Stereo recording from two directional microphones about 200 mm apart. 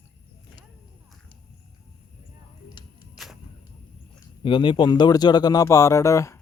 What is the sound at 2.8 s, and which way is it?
Music, 20° left (ahead or behind).